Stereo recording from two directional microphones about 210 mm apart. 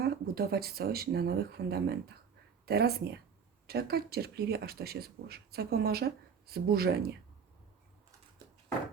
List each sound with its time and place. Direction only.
0.0 s speech: 50° right (ahead or behind)